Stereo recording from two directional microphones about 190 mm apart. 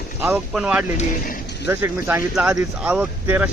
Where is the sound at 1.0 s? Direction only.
45° left (ahead or behind).